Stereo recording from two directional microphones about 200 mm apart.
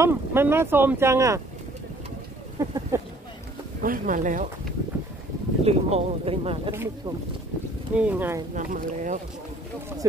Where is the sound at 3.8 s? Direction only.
45° right (ahead or behind).